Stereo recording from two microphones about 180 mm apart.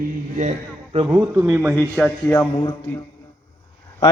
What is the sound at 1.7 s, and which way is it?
Speech, 10° left (ahead or behind).